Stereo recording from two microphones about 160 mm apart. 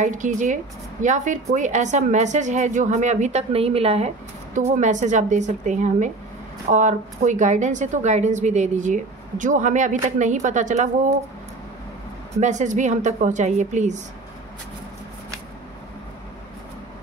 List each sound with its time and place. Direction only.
0.0 s a woman's voice: 50° right (ahead or behind)
4.6 s a woman's voice: 50° right (ahead or behind)
12.4 s a woman's voice: 50° right (ahead or behind)